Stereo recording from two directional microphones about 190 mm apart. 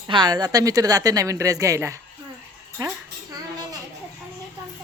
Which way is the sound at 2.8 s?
20° right (ahead or behind).